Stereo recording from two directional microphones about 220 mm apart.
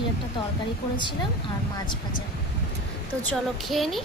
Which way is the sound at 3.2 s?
5° left (ahead or behind).